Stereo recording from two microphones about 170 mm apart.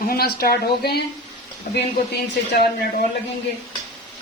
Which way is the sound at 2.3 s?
90° left.